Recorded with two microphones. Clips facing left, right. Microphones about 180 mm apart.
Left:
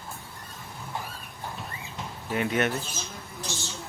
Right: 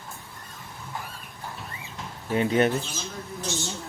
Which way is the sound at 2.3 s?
30° right (ahead or behind).